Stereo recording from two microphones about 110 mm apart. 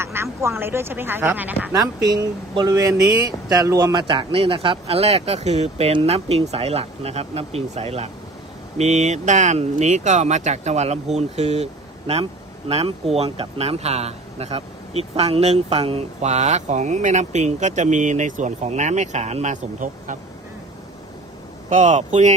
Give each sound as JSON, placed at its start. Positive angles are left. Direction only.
{"t": 0.0, "sound": "speech", "side_deg": -25}
{"t": 1.7, "sound": "speech", "side_deg": -35}
{"t": 3.9, "sound": "speech", "side_deg": -45}
{"t": 8.8, "sound": "speech", "side_deg": -90}
{"t": 11.2, "sound": "speech", "side_deg": -75}
{"t": 12.2, "sound": "speech", "side_deg": -60}
{"t": 21.8, "sound": "speech", "side_deg": -90}